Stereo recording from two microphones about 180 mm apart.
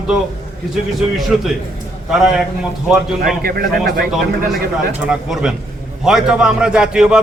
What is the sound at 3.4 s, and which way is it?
Speech, 55° right (ahead or behind).